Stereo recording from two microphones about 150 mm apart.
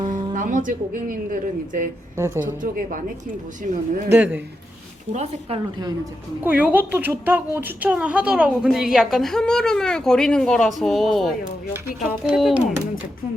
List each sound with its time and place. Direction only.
0.0 s music: 30° right (ahead or behind)
0.3 s a woman's voice: 60° right (ahead or behind)
2.1 s speech: 20° right (ahead or behind)
2.4 s a woman's voice: 65° right (ahead or behind)
4.1 s speech: 10° right (ahead or behind)
5.1 s speech: 45° right (ahead or behind)
6.4 s speech: 10° right (ahead or behind)